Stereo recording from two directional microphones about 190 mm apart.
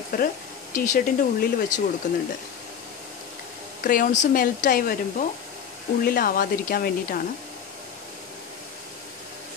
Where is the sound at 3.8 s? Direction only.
45° left (ahead or behind).